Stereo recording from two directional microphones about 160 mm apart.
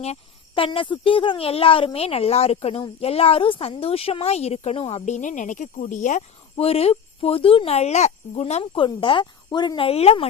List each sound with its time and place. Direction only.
0.0 s speech: 40° left (ahead or behind)